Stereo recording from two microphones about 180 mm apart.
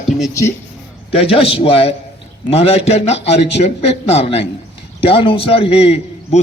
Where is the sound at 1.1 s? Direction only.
30° left (ahead or behind).